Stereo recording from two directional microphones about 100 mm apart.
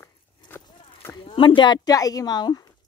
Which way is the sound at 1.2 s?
55° left (ahead or behind).